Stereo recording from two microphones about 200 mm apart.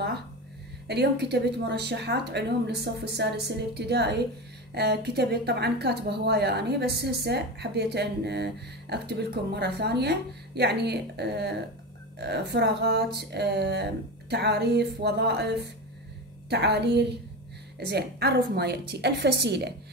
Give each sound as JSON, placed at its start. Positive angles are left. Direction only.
{"t": 0.8, "sound": "speech", "side_deg": -55}